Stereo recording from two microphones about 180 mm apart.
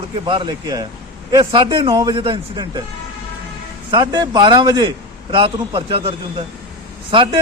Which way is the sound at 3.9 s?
20° right (ahead or behind).